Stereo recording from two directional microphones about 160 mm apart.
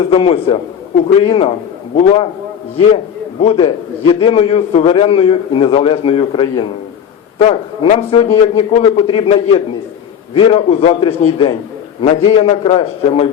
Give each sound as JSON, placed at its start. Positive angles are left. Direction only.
{"t": 0.0, "sound": "a man's voice", "side_deg": 35}
{"t": 3.4, "sound": "a man's voice", "side_deg": 35}